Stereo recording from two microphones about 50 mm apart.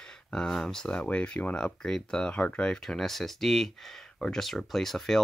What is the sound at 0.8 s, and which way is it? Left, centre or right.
Speech, left.